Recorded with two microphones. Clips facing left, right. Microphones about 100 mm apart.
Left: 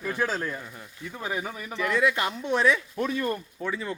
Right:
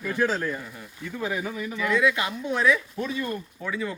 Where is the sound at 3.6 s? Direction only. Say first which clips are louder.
Even; 25° left (ahead or behind).